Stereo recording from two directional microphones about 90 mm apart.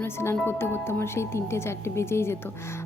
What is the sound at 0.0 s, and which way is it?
Speech, 30° left (ahead or behind).